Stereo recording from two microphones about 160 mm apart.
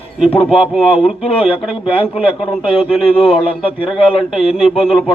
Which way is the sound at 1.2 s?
35° left (ahead or behind).